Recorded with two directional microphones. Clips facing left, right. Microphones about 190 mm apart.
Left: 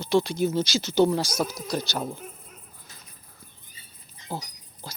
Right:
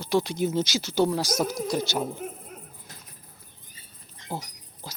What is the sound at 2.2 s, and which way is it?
Dog, 60° right (ahead or behind).